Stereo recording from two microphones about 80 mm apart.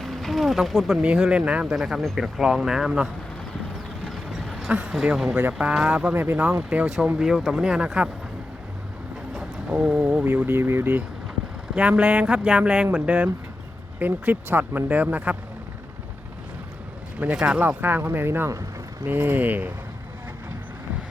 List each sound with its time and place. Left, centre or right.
0.0 s a sound: centre
1.0 s speech: centre
1.7 s speech: centre
4.0 s a sound: centre
4.9 s speech: centre
6.1 s speech: right; by 7.9 s centre
9.3 s a sound: centre
10.0 s speech: right
11.7 s speech: centre
17.2 s speech: centre